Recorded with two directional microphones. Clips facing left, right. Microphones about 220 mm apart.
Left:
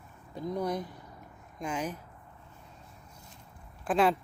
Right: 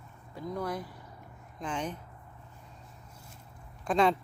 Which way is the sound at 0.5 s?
20° left (ahead or behind).